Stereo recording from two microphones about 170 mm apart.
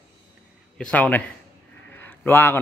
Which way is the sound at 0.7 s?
5° left (ahead or behind).